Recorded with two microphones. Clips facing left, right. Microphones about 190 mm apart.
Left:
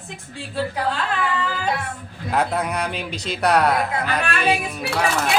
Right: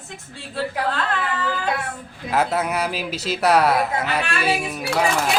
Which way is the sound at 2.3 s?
5° right (ahead or behind).